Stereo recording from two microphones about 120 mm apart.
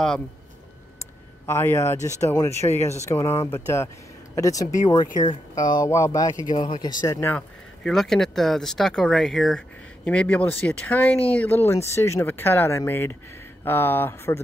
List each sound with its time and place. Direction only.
1.4 s speech: 20° left (ahead or behind)
4.6 s speech: 90° left
4.9 s speech: 40° left (ahead or behind)
7.2 s speech: 20° left (ahead or behind)
7.8 s speech: 5° left (ahead or behind); by 14.4 s 20° left (ahead or behind)